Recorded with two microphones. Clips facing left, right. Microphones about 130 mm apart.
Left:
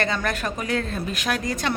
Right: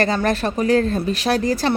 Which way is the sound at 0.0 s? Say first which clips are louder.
Right 6 dB; 35° right (ahead or behind).